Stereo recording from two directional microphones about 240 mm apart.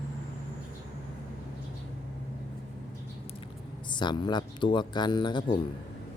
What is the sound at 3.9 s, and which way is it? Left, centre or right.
Speech, centre.